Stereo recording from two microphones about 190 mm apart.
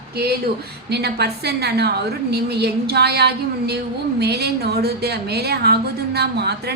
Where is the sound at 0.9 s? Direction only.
60° right (ahead or behind).